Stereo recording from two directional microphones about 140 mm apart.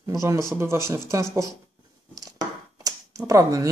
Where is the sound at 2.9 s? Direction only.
25° right (ahead or behind).